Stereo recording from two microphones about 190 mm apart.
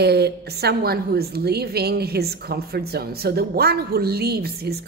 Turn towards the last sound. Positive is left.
turn(degrees=-55)  # may be behind; listen again after turning